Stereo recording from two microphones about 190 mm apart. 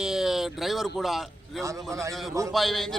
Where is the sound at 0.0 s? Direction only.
Centre (ahead or behind).